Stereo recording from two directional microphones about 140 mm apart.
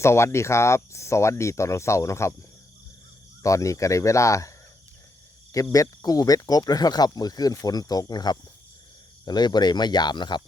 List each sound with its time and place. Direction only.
0.0 s speech: 20° left (ahead or behind)
3.4 s speech: 20° left (ahead or behind)
5.7 s speech: 25° left (ahead or behind)